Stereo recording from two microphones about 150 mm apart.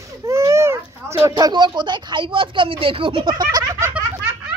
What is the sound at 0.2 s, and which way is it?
Speech, 20° right (ahead or behind).